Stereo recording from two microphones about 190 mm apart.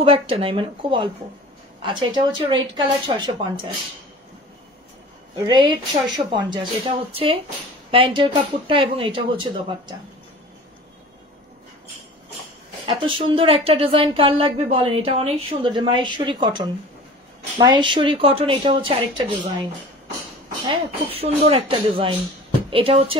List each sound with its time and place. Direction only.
0.0 s a woman's voice: 30° right (ahead or behind)
5.4 s a woman's voice: 25° right (ahead or behind)
12.8 s a woman's voice: 25° right (ahead or behind)
20.7 s a woman's voice: 30° right (ahead or behind)